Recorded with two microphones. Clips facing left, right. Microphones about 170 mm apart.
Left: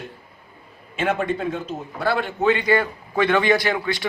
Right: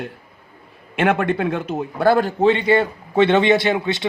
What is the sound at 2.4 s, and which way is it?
A man's voice, 30° right (ahead or behind).